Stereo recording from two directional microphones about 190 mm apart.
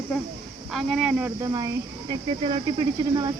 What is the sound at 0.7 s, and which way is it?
Speech, centre (ahead or behind).